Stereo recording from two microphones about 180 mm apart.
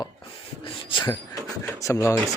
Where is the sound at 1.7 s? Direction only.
15° left (ahead or behind).